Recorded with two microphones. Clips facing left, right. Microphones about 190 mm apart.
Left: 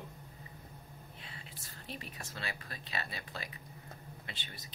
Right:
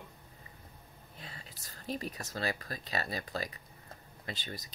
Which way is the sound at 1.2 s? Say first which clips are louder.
Right 5 dB; 40° right (ahead or behind).